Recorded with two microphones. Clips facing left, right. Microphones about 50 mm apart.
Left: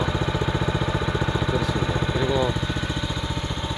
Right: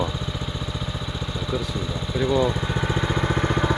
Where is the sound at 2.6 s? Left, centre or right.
Centre.